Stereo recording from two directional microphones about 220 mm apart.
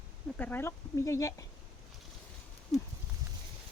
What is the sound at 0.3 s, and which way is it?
Speech, 10° left (ahead or behind).